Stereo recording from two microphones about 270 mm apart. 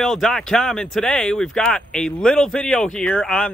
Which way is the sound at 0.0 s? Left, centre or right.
Centre.